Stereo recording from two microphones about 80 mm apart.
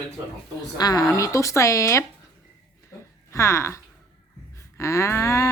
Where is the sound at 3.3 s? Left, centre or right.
Left.